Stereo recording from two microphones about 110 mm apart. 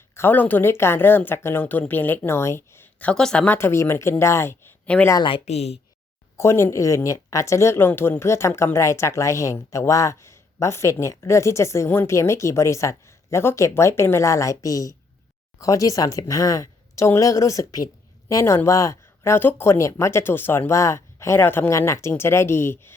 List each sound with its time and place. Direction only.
0.1 s speech: 20° left (ahead or behind)
3.4 s speech: 20° left (ahead or behind)
4.9 s speech: 10° left (ahead or behind)
5.5 s speech: 75° left (ahead or behind)
6.3 s speech: 25° left (ahead or behind)